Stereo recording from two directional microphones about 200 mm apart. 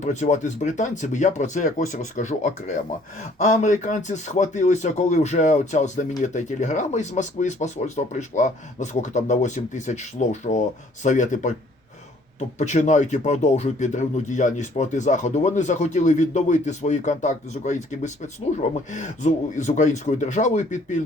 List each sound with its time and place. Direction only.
0.0 s speech: 35° left (ahead or behind)